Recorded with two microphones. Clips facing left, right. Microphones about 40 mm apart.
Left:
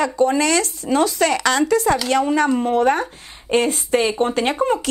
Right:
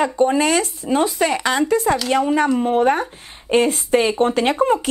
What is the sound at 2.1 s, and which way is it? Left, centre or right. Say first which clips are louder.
Speech: right 2 dB; centre.